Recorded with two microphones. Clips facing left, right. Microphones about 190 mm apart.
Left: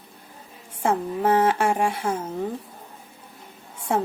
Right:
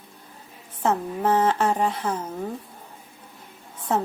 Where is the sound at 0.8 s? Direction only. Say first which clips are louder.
Left 1 dB; 10° left (ahead or behind).